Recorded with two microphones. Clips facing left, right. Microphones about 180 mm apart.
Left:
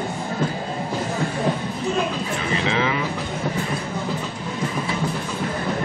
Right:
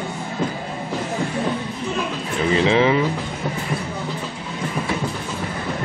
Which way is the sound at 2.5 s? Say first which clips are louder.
Right 7 dB; 30° right (ahead or behind).